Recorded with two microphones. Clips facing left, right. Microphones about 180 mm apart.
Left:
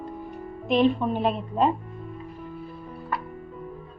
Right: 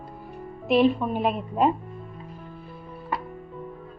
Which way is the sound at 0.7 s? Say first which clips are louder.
Right 1 dB; 5° right (ahead or behind).